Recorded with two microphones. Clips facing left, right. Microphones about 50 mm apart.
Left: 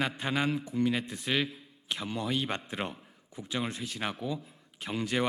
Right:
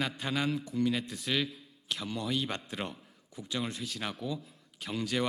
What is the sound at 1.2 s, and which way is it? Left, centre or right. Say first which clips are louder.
A man's voice: left 2 dB; left.